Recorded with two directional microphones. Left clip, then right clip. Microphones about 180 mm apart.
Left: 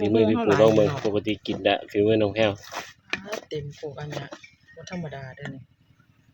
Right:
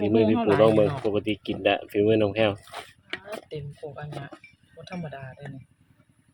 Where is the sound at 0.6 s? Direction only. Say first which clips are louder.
Left 1 dB; centre (ahead or behind).